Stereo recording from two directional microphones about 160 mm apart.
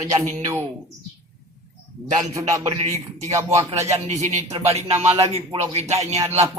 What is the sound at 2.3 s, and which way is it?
Speech, 20° right (ahead or behind).